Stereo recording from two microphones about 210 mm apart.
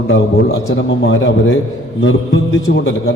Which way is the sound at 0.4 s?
65° left (ahead or behind).